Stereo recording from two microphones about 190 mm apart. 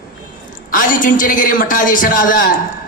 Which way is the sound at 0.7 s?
45° left (ahead or behind).